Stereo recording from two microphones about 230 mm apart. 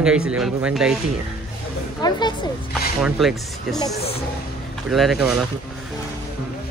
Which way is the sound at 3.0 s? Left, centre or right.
Centre.